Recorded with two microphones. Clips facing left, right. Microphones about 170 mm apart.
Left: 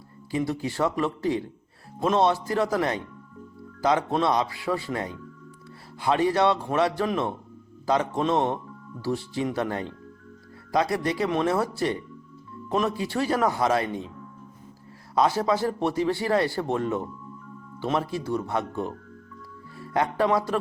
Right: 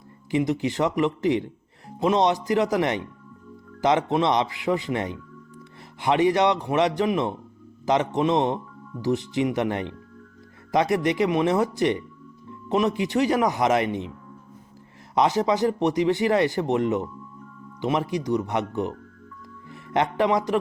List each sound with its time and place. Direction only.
0.3 s speech: 20° right (ahead or behind)
15.1 s speech: 20° right (ahead or behind)